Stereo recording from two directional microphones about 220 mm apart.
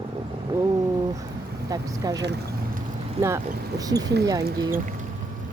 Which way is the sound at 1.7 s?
15° right (ahead or behind).